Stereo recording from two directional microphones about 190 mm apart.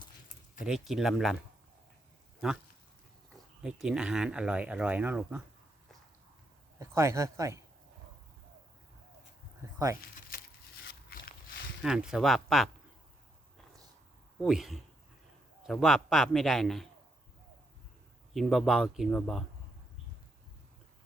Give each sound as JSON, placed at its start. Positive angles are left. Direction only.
{"t": 0.6, "sound": "speech", "side_deg": 0}
{"t": 3.6, "sound": "speech", "side_deg": -5}
{"t": 6.7, "sound": "speech", "side_deg": -15}
{"t": 9.7, "sound": "speech", "side_deg": -15}
{"t": 10.8, "sound": "a sound", "side_deg": 50}
{"t": 11.8, "sound": "speech", "side_deg": -5}
{"t": 14.4, "sound": "speech", "side_deg": 0}
{"t": 18.3, "sound": "speech", "side_deg": 0}